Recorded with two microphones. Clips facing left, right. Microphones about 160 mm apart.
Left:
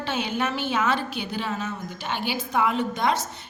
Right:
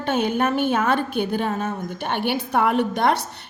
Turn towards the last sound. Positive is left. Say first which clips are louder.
# right 4 dB
turn(degrees=-65)  # may be behind; listen again after turning